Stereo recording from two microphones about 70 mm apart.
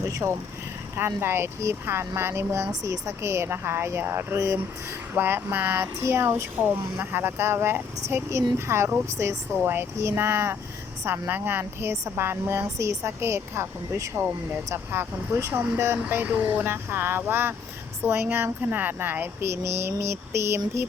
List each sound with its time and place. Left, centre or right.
0.1 s a woman's voice: right
2.8 s a woman's voice: right
4.4 s speech: right
5.1 s a woman's voice: right